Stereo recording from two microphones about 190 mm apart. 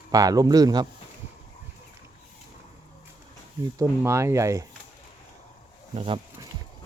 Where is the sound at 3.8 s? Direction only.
15° right (ahead or behind).